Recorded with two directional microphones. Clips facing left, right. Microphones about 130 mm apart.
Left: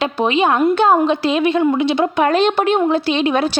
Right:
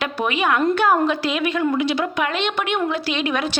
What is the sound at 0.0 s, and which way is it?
A woman's voice, 25° left (ahead or behind).